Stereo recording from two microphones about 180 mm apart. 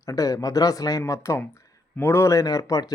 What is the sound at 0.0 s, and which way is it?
A man's voice, 20° left (ahead or behind).